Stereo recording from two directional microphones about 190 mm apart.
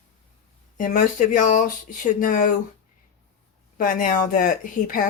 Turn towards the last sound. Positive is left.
turn(degrees=45)  # may be behind; listen again after turning